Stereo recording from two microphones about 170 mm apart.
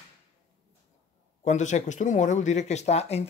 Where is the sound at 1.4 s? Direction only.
45° left (ahead or behind).